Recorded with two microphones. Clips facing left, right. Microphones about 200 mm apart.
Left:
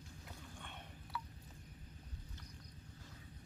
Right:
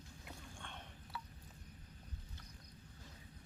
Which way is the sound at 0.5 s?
5° left (ahead or behind).